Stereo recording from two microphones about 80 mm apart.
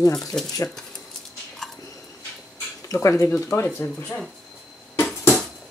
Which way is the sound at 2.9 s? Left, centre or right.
Left.